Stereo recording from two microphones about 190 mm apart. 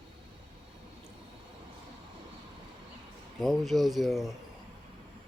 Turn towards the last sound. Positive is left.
turn(degrees=0)  # may be behind; listen again after turning